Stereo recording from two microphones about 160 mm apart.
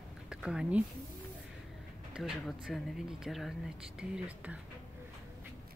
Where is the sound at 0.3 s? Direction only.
5° right (ahead or behind).